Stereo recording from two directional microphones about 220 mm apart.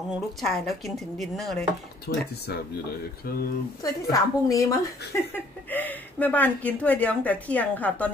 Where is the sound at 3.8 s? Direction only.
15° left (ahead or behind).